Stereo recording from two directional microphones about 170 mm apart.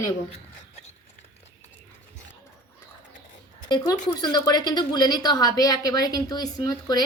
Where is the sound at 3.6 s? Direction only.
25° left (ahead or behind).